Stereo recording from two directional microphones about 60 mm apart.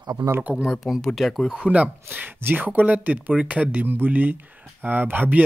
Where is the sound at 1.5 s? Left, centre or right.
Centre.